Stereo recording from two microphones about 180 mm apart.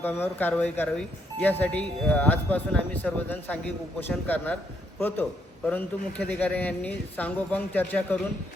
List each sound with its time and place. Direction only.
0.0 s a man's voice: 10° left (ahead or behind)